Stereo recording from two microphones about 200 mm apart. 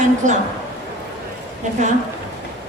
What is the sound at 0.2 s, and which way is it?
Speech, 40° right (ahead or behind).